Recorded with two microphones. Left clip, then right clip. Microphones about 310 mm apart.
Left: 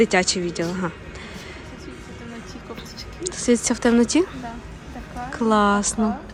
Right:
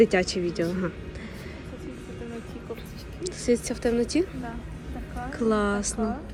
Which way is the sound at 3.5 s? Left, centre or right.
Left.